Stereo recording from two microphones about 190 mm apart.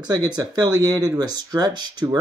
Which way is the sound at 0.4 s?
20° right (ahead or behind).